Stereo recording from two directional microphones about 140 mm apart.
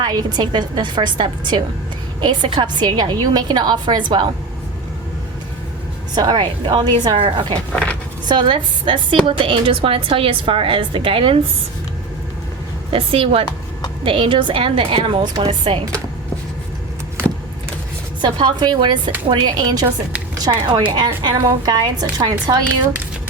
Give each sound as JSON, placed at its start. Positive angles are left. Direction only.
{"t": 0.0, "sound": "a woman's voice", "side_deg": -30}
{"t": 6.1, "sound": "a woman's voice", "side_deg": -30}
{"t": 7.7, "sound": "speech", "side_deg": 5}
{"t": 8.3, "sound": "a woman's voice", "side_deg": -35}
{"t": 12.9, "sound": "a woman's voice", "side_deg": -40}
{"t": 18.2, "sound": "a woman's voice", "side_deg": -30}